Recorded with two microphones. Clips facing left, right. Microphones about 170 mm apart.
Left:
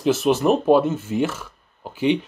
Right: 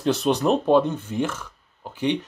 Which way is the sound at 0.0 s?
5° left (ahead or behind).